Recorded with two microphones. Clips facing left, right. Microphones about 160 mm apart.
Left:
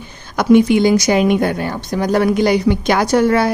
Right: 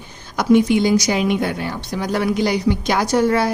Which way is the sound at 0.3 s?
60° left (ahead or behind).